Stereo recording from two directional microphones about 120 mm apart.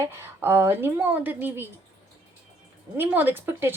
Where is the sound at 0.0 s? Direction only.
20° right (ahead or behind).